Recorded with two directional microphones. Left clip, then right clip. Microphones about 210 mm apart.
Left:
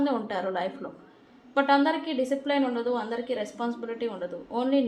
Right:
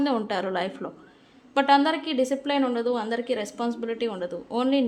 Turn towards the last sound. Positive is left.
turn(degrees=-35)  # may be behind; listen again after turning